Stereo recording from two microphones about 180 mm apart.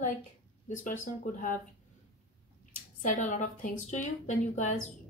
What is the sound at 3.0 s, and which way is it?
Speech, 45° left (ahead or behind).